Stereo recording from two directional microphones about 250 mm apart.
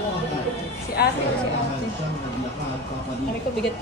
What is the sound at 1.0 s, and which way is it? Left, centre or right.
Speech, left.